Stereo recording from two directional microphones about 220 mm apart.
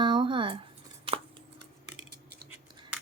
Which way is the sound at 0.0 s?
20° right (ahead or behind).